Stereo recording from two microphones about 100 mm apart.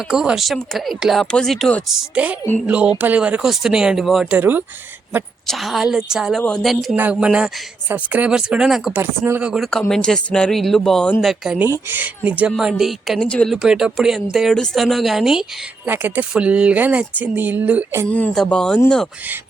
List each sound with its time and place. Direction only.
0.1 s speech: 5° right (ahead or behind)
1.9 s speech: 10° right (ahead or behind)
4.3 s speech: 15° right (ahead or behind)
5.5 s speech: centre (ahead or behind)
6.9 s speech: 15° right (ahead or behind)
8.9 s speech: 20° right (ahead or behind)
9.4 s speech: 5° right (ahead or behind)
9.9 s speech: 5° left (ahead or behind)
11.9 s speech: 20° right (ahead or behind)
12.5 s speech: 5° right (ahead or behind)
13.2 s speech: 10° left (ahead or behind)
13.5 s speech: 5° right (ahead or behind)
15.9 s speech: 15° right (ahead or behind)
18.1 s speech: 15° left (ahead or behind)